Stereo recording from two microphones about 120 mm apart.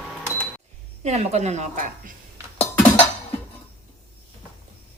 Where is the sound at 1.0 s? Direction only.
65° right (ahead or behind).